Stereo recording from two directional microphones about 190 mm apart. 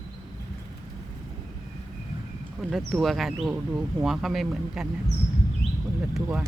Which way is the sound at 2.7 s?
Centre (ahead or behind).